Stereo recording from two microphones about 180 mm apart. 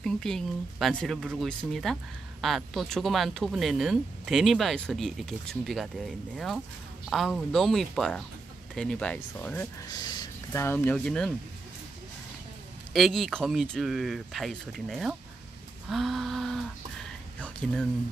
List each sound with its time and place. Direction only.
0.0 s speech: 5° left (ahead or behind)
10.0 s speech: 20° left (ahead or behind); by 11.3 s 5° left (ahead or behind)
12.9 s speech: centre (ahead or behind)